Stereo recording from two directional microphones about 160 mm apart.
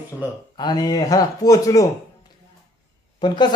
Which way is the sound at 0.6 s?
25° left (ahead or behind).